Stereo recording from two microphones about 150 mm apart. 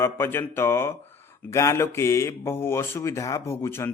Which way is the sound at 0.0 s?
15° left (ahead or behind).